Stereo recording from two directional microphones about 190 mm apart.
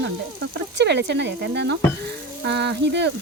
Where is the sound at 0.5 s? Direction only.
65° right (ahead or behind).